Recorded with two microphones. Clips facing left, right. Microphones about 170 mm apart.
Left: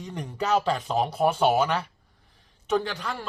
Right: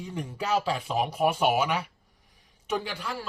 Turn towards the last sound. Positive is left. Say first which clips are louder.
# left 4 dB
turn(degrees=-10)  # may be behind; listen again after turning